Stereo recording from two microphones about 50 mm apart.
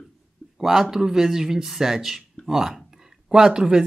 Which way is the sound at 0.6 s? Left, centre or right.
Centre.